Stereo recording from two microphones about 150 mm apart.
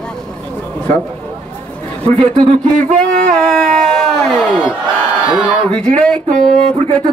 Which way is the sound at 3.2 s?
5° left (ahead or behind).